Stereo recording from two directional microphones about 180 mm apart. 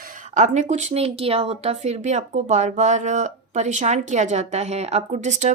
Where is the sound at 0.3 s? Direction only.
40° right (ahead or behind).